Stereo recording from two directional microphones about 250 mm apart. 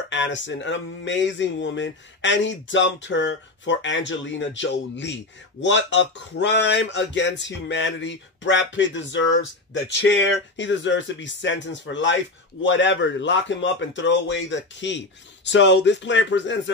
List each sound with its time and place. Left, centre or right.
0.1 s speech: left